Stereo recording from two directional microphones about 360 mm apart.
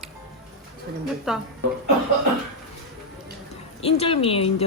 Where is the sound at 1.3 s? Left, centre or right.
Centre.